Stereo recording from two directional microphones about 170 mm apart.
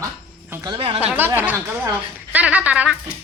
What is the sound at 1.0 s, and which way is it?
A woman's voice, 10° right (ahead or behind).